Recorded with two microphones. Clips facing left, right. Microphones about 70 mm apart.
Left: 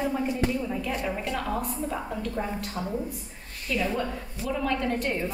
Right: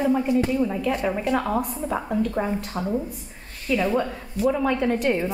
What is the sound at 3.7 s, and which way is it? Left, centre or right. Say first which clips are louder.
Speech: right 5 dB; centre.